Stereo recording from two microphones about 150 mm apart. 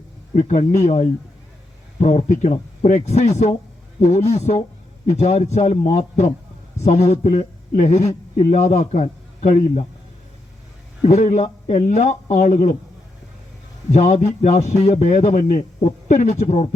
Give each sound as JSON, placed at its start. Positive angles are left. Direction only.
{"t": 0.3, "sound": "a man's voice", "side_deg": 50}
{"t": 11.0, "sound": "a man's voice", "side_deg": 50}
{"t": 13.9, "sound": "a man's voice", "side_deg": 50}